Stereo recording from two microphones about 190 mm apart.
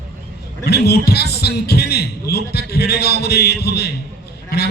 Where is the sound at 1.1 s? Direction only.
60° left (ahead or behind).